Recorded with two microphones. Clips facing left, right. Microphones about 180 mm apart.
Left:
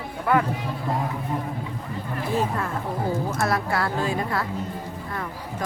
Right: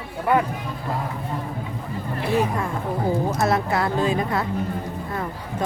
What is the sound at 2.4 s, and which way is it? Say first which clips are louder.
A woman's voice: right 2 dB; 15° right (ahead or behind).